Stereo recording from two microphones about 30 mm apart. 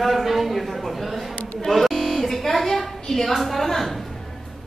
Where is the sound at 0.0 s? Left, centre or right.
Centre.